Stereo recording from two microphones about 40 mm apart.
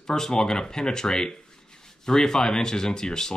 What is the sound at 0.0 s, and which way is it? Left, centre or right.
Speech, centre.